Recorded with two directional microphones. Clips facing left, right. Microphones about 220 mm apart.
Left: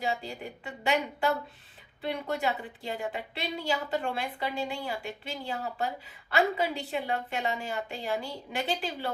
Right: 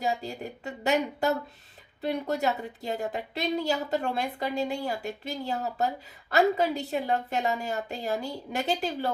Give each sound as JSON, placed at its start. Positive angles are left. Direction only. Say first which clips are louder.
{"t": 0.0, "sound": "a woman's voice", "louder": "right 2 dB", "side_deg": -40}